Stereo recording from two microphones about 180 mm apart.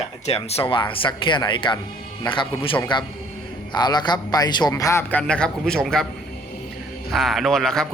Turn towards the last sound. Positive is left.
turn(degrees=5)  # may be behind; listen again after turning